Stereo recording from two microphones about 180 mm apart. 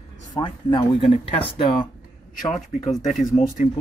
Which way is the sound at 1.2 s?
30° left (ahead or behind).